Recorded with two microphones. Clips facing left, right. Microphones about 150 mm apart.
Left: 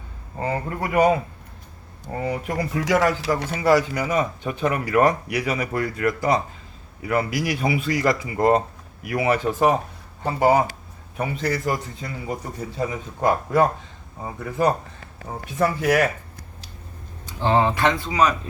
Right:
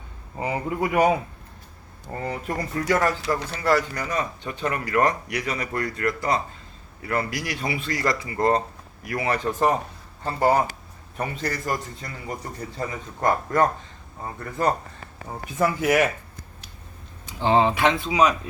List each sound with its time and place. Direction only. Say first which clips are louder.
0.3 s speech: even; 10° right (ahead or behind)
0.9 s speech: left 3 dB; centre (ahead or behind)
17.4 s speech: even; 20° right (ahead or behind)